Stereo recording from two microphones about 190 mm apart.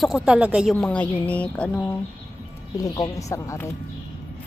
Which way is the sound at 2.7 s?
20° left (ahead or behind).